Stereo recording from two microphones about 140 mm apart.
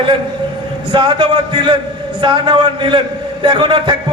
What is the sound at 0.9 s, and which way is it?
A man's voice, 35° right (ahead or behind).